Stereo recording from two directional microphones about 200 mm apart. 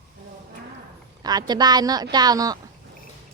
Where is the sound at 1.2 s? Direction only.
20° right (ahead or behind).